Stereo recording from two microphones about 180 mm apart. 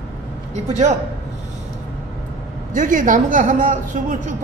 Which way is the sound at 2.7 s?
45° right (ahead or behind).